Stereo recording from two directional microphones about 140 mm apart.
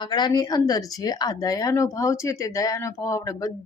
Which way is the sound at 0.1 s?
30° left (ahead or behind).